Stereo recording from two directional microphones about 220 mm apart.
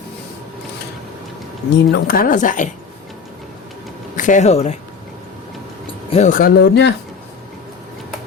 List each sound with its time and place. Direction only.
1.7 s speech: 45° left (ahead or behind)
4.2 s speech: 35° left (ahead or behind)
6.1 s speech: 30° left (ahead or behind); by 6.9 s 50° left (ahead or behind)